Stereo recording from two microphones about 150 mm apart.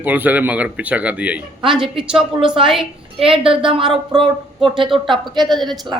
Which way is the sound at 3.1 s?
35° right (ahead or behind).